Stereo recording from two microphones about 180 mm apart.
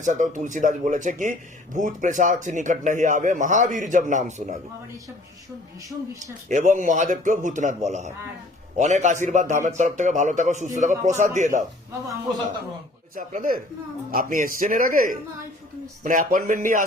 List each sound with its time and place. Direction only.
0.0 s speech: 45° right (ahead or behind)
6.5 s speech: 45° right (ahead or behind)
13.1 s speech: 50° right (ahead or behind)